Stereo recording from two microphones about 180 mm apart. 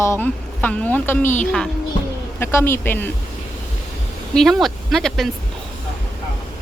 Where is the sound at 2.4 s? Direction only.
15° left (ahead or behind).